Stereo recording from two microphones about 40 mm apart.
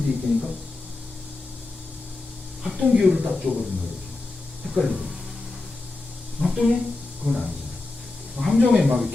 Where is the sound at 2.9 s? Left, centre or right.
Centre.